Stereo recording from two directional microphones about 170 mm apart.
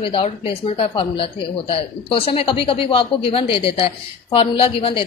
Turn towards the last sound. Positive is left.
turn(degrees=35)  # may be behind; listen again after turning